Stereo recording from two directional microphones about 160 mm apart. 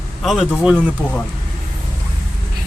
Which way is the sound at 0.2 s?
Centre (ahead or behind).